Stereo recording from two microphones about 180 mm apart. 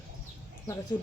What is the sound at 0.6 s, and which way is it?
Speech, 20° left (ahead or behind).